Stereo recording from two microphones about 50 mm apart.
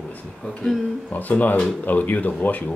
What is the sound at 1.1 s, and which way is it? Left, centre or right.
Speech, left.